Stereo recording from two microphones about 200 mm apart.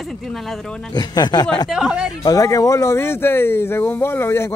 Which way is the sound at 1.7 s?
5° right (ahead or behind).